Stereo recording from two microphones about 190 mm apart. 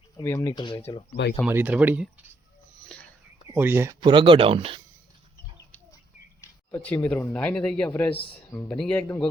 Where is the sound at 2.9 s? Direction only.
5° left (ahead or behind).